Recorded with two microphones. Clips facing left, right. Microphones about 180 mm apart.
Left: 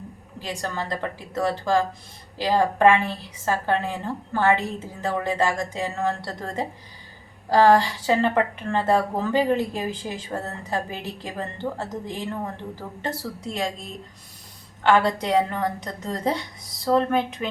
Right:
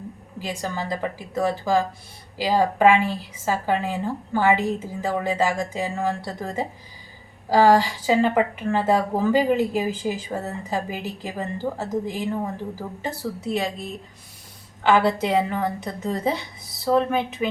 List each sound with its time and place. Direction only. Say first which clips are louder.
0.4 s a woman's voice: right 1 dB; 5° right (ahead or behind)
14.8 s a woman's voice: right 1 dB; 5° right (ahead or behind)